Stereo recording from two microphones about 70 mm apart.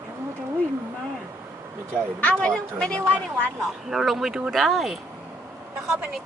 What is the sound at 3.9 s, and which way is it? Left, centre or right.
Speech, centre.